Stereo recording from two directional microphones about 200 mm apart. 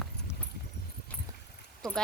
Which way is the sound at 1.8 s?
5° left (ahead or behind).